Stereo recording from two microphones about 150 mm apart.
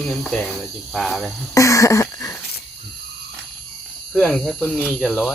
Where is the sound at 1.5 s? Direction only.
20° left (ahead or behind).